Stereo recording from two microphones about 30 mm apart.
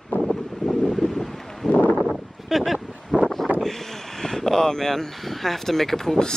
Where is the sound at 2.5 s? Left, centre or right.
Centre.